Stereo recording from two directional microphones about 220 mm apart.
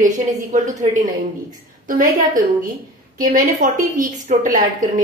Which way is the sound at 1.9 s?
35° right (ahead or behind).